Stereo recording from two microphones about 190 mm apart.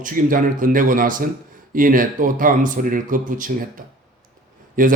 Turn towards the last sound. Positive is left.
turn(degrees=-45)  # may be behind; listen again after turning